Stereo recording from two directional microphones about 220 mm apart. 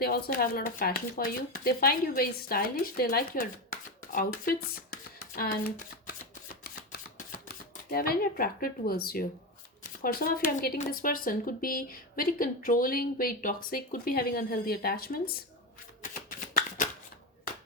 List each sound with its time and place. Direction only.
0.0 s speech: 40° left (ahead or behind)
7.2 s speech: 40° left (ahead or behind)
16.3 s shuffling cards: 35° left (ahead or behind)